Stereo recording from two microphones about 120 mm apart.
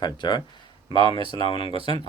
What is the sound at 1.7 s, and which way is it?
Speech, 50° right (ahead or behind).